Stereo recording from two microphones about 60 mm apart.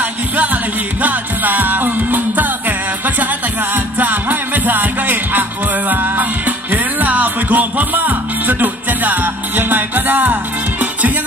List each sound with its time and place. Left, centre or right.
1.0 s music: right
3.7 s music: right